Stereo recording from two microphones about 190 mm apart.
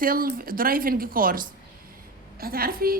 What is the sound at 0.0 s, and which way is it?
A woman's voice, 50° right (ahead or behind).